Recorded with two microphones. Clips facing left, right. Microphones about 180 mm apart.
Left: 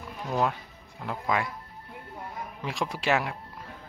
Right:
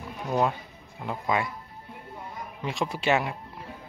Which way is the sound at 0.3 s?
5° right (ahead or behind).